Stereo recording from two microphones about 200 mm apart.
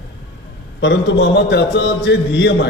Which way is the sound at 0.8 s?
60° left (ahead or behind).